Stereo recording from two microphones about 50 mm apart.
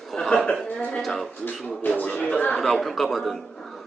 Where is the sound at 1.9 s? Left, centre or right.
Left.